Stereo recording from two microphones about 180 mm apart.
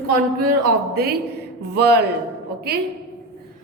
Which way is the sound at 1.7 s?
65° right (ahead or behind).